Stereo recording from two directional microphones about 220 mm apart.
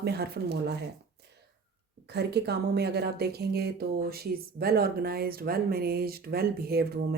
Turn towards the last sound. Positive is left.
turn(degrees=-45)  # may be behind; listen again after turning